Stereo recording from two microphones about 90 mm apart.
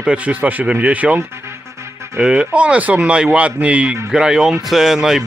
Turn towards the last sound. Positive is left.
turn(degrees=-5)  # may be behind; listen again after turning